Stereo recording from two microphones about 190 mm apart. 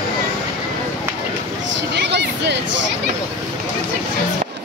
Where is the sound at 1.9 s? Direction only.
65° right (ahead or behind).